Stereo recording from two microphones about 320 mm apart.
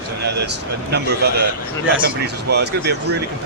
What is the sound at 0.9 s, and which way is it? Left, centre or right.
Speech, right.